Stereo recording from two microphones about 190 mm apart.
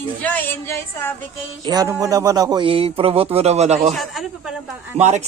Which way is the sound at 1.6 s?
20° right (ahead or behind).